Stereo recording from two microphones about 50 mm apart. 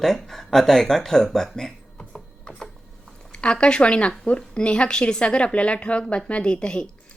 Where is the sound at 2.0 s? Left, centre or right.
Centre.